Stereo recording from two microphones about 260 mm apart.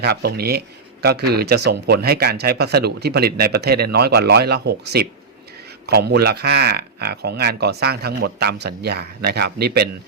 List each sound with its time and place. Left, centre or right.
0.0 s speech: right